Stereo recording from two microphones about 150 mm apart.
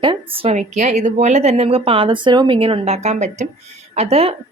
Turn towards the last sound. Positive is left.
turn(degrees=-45)  # may be behind; listen again after turning